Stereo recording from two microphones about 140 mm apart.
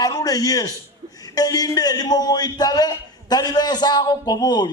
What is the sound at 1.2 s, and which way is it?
A man's voice, 30° left (ahead or behind).